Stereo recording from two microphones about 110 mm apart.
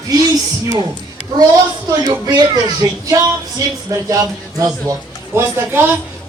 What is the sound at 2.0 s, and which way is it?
Speech, 40° right (ahead or behind).